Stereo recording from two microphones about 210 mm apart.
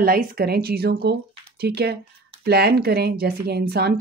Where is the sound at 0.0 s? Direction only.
45° right (ahead or behind).